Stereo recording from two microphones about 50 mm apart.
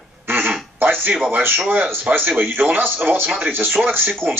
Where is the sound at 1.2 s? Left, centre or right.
Right.